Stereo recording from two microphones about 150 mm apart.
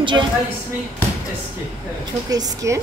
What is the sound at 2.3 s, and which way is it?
Speech, 25° right (ahead or behind).